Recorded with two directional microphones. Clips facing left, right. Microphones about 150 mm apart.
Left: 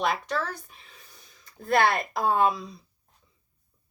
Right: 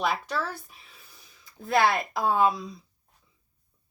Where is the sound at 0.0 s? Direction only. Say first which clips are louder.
Left 1 dB; centre (ahead or behind).